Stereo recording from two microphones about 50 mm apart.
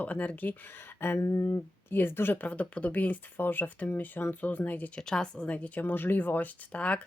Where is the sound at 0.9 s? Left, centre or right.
Left.